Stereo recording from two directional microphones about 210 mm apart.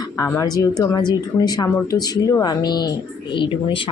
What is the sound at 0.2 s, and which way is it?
Speech, 15° left (ahead or behind).